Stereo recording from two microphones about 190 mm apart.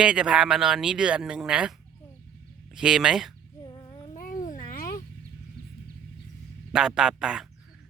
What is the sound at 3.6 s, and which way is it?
Child singing, 20° left (ahead or behind).